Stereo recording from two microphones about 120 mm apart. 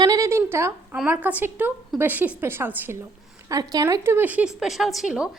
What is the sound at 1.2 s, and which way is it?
A woman's voice, 15° right (ahead or behind).